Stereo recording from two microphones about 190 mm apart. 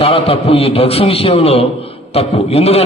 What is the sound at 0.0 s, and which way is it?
A man's voice, 30° left (ahead or behind).